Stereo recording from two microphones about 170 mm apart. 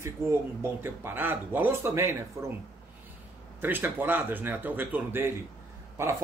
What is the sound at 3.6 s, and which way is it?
Speech, 10° right (ahead or behind).